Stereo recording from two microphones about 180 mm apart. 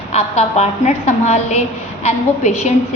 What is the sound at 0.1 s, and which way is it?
A woman's voice, 35° left (ahead or behind).